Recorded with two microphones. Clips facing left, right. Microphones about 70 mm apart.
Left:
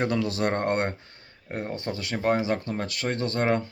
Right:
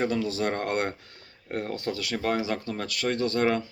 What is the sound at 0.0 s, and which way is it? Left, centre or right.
Speech, left.